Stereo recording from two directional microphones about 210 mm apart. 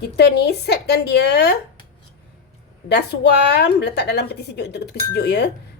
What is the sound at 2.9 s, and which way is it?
Speech, 55° left (ahead or behind).